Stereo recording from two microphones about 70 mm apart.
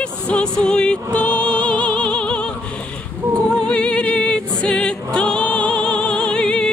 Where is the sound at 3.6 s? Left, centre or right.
Centre.